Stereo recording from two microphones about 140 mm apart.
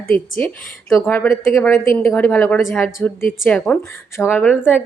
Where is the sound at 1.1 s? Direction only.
10° left (ahead or behind).